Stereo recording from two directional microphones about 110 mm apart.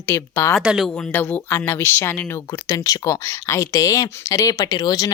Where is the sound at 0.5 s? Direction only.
5° right (ahead or behind).